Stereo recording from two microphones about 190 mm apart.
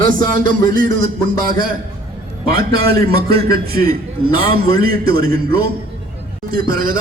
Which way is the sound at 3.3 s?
50° right (ahead or behind).